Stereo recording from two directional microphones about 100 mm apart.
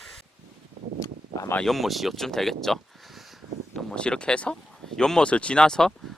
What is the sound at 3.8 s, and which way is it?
Speech, 10° left (ahead or behind).